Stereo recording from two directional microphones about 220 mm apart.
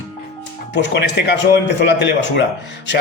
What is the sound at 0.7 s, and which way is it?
A man's voice, 50° left (ahead or behind).